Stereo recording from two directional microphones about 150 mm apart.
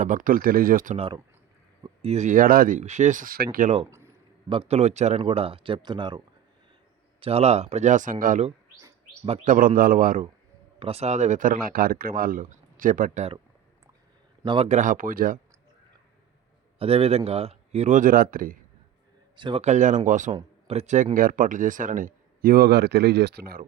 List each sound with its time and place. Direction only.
0.0 s speech: 65° right (ahead or behind)
0.9 s speech: 35° right (ahead or behind); by 3.7 s 80° right
4.4 s speech: 35° right (ahead or behind)
7.2 s speech: 45° right (ahead or behind); by 8.4 s 65° right (ahead or behind)
9.4 s speech: 65° right (ahead or behind)
10.8 s speech: 40° right (ahead or behind)
14.4 s speech: 35° right (ahead or behind)
14.7 s speech: 60° right (ahead or behind)
16.7 s speech: 40° right (ahead or behind); by 18.5 s 75° right (ahead or behind)
19.4 s speech: 30° right (ahead or behind)
19.6 s speech: 55° right (ahead or behind)
20.3 s speech: 45° right (ahead or behind); by 23.6 s 90° right